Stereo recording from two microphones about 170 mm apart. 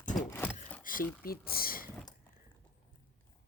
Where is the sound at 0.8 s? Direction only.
55° left (ahead or behind).